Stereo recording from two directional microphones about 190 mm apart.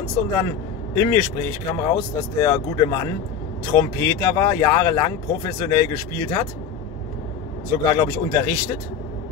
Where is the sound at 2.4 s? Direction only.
20° left (ahead or behind).